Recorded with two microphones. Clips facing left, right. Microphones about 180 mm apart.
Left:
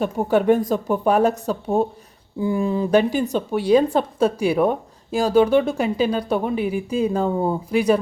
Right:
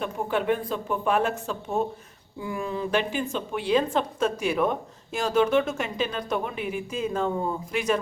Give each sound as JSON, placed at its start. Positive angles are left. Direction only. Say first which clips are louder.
{"t": 0.0, "sound": "speech", "louder": "left 8 dB", "side_deg": 45}